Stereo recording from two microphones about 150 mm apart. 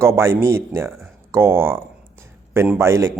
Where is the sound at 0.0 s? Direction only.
20° right (ahead or behind).